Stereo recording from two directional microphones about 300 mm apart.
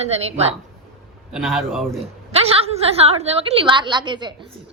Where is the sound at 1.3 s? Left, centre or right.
Centre.